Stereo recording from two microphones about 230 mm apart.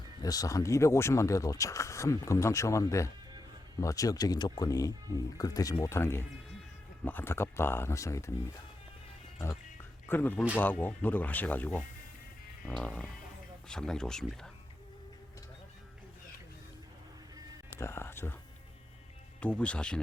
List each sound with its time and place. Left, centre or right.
0.2 s speech: centre
10.1 s speech: centre
17.7 s speech: centre
19.4 s speech: centre